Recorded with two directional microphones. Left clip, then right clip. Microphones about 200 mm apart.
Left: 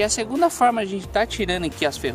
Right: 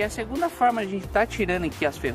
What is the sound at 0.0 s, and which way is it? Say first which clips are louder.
Speech: left 6 dB; 30° left (ahead or behind).